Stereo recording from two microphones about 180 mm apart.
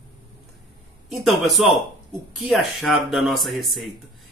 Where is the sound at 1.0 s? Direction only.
Centre (ahead or behind).